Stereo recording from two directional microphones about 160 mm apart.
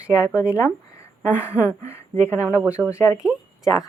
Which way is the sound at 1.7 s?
15° left (ahead or behind).